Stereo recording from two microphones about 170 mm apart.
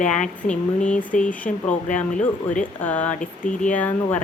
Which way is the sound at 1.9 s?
50° left (ahead or behind).